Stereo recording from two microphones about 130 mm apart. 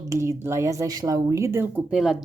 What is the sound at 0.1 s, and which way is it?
Speech, 20° right (ahead or behind).